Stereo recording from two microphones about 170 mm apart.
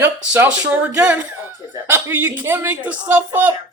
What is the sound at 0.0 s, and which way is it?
Speech, 10° right (ahead or behind).